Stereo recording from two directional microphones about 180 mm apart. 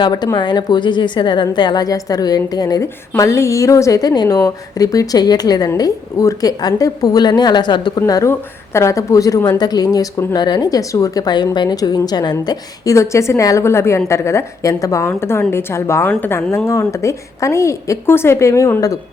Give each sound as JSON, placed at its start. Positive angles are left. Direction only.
{"t": 0.0, "sound": "a woman's voice", "side_deg": 20}